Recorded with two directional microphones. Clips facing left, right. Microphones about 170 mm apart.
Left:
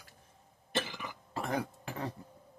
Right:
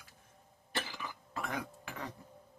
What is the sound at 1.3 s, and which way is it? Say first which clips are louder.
Cough: left 6 dB; 30° left (ahead or behind).